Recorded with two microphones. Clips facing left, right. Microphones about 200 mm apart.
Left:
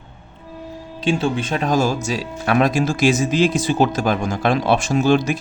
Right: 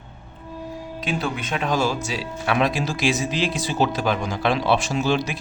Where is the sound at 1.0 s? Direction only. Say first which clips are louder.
Left 7 dB; 30° left (ahead or behind).